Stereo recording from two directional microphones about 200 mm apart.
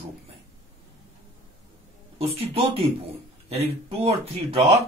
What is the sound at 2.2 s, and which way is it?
Speech, 30° right (ahead or behind).